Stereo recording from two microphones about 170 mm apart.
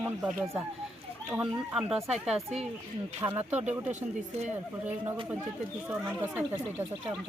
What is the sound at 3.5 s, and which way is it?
Speech, 40° right (ahead or behind).